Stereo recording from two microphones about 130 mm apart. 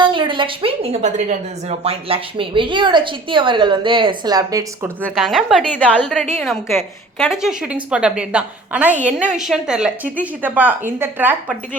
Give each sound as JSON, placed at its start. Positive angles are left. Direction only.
{"t": 0.0, "sound": "a woman's voice", "side_deg": -40}
{"t": 5.0, "sound": "a woman's voice", "side_deg": 0}